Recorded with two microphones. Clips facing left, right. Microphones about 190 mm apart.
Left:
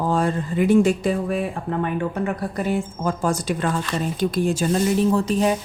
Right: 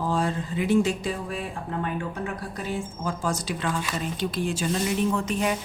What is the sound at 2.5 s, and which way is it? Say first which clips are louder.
Speech: left 7 dB; 55° left (ahead or behind).